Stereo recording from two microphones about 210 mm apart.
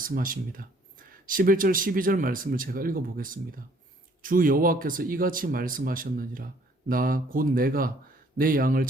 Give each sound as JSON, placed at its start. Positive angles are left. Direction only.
{"t": 0.0, "sound": "speech", "side_deg": -40}